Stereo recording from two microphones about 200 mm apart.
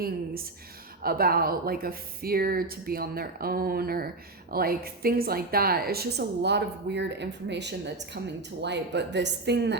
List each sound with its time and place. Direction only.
1.0 s a woman's voice: 50° right (ahead or behind)